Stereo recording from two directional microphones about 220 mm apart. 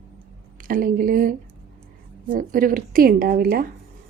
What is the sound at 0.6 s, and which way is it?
A woman's voice, 40° right (ahead or behind).